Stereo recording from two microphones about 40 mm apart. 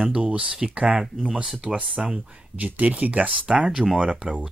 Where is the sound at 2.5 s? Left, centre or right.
Right.